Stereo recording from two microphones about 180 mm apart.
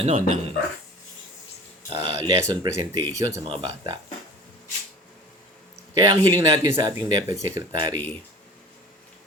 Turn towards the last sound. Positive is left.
turn(degrees=-20)  # may be behind; listen again after turning